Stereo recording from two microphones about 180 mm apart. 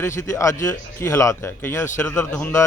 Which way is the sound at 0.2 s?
15° left (ahead or behind).